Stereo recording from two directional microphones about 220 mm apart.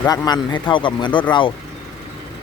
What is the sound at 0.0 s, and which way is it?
Speech, 20° left (ahead or behind).